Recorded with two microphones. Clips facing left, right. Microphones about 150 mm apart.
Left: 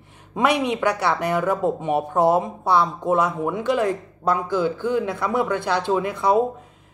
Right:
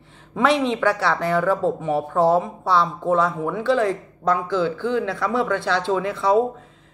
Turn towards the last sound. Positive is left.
turn(degrees=15)  # may be behind; listen again after turning